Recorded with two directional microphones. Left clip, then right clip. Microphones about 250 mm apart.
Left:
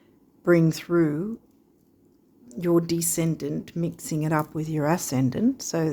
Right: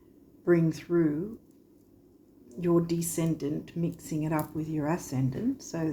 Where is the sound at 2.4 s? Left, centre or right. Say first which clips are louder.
Left 4 dB; left.